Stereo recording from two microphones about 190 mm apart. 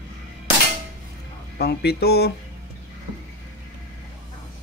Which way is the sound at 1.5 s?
60° left (ahead or behind).